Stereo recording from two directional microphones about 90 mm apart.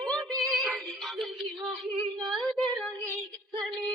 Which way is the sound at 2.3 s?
Centre (ahead or behind).